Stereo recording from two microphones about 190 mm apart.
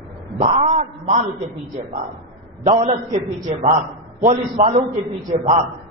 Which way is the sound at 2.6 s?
35° right (ahead or behind).